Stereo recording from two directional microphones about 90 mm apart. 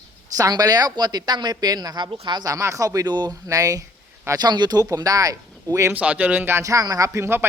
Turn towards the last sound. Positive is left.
turn(degrees=-25)  # may be behind; listen again after turning